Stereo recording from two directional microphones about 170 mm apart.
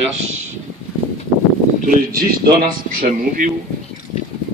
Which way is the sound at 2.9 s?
50° right (ahead or behind).